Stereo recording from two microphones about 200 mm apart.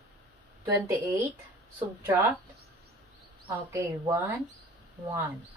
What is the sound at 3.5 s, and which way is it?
A woman's voice, 15° right (ahead or behind).